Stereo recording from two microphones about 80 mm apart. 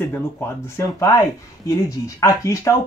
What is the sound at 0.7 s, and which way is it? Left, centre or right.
Speech, left.